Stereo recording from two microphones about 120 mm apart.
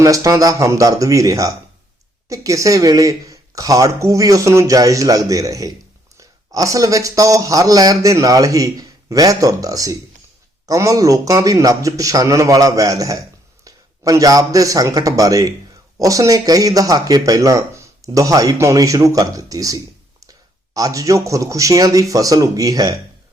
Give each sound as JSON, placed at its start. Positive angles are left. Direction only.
{"t": 0.0, "sound": "a man's voice", "side_deg": -25}